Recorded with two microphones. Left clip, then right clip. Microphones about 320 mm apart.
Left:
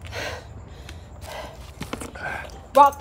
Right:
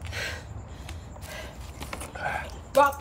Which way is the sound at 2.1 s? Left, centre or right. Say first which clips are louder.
Right 2 dB; centre.